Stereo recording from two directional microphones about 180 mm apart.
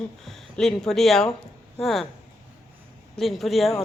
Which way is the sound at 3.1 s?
Centre (ahead or behind).